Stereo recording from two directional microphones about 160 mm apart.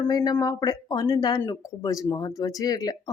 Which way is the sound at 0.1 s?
20° left (ahead or behind).